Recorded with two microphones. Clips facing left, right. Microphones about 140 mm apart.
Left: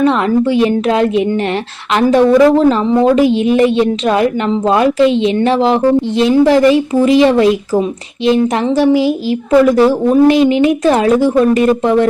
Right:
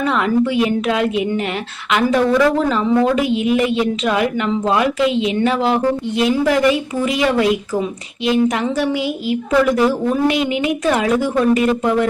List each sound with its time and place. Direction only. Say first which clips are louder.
0.5 s a woman's voice: left 5 dB; 35° left (ahead or behind)
9.5 s a woman's voice: left 6 dB; 30° left (ahead or behind)